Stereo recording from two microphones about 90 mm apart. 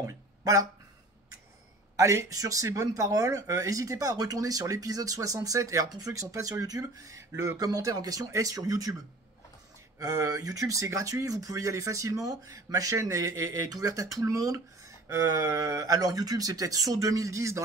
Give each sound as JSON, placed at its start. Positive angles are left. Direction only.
{"t": 0.0, "sound": "speech", "side_deg": -40}
{"t": 2.0, "sound": "speech", "side_deg": -35}
{"t": 7.5, "sound": "speech", "side_deg": -45}
{"t": 9.9, "sound": "speech", "side_deg": -40}